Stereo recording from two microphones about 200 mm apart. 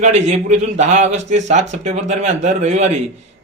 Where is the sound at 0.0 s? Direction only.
35° right (ahead or behind).